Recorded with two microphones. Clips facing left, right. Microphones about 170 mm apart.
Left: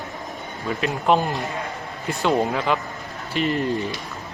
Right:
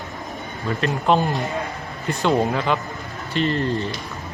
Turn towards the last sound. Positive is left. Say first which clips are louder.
# right 1 dB
turn(degrees=10)  # may be behind; listen again after turning